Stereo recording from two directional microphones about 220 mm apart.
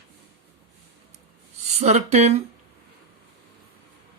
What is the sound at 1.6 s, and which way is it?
Speech, 30° right (ahead or behind).